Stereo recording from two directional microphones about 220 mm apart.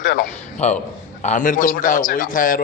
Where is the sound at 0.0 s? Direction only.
40° left (ahead or behind).